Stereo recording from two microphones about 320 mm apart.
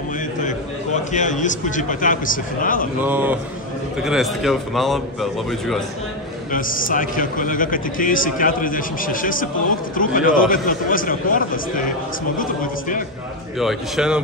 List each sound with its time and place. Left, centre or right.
0.4 s a man's voice: left
3.0 s a man's voice: centre
6.5 s a man's voice: left
13.6 s a man's voice: centre